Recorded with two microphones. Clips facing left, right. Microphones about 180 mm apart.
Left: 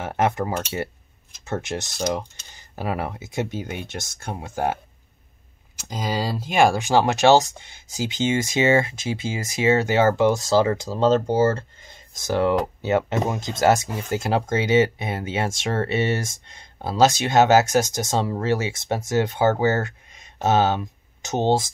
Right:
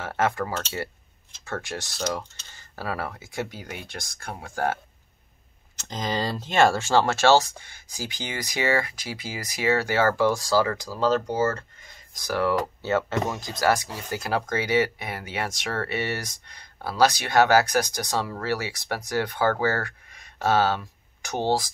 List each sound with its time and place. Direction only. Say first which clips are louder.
0.0 s speech: left 3 dB; 20° left (ahead or behind)
5.8 s speech: left 2 dB; 10° left (ahead or behind)